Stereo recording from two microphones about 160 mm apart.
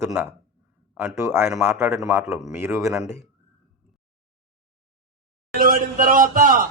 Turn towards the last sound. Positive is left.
turn(degrees=-60)  # may be behind; listen again after turning